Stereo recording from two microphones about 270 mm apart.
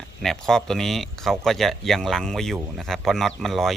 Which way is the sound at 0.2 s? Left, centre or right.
Centre.